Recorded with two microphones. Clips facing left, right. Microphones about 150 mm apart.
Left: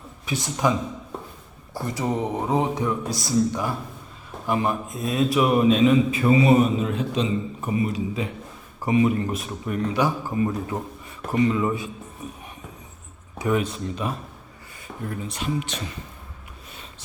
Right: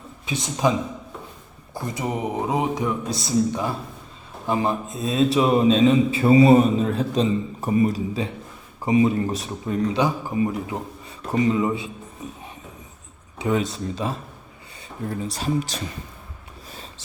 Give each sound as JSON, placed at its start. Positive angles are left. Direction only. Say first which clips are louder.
{"t": 0.3, "sound": "a man's voice", "louder": "right 1 dB", "side_deg": -20}
{"t": 1.7, "sound": "a man's voice", "louder": "left 1 dB", "side_deg": -15}
{"t": 8.8, "sound": "a man's voice", "louder": "right 1 dB", "side_deg": -20}
{"t": 13.7, "sound": "a man's voice", "louder": "right 1 dB", "side_deg": -30}